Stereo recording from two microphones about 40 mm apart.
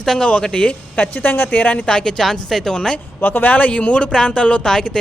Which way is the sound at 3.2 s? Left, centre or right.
Left.